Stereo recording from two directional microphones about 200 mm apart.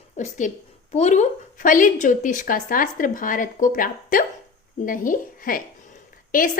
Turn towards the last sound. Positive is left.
turn(degrees=45)  # may be behind; listen again after turning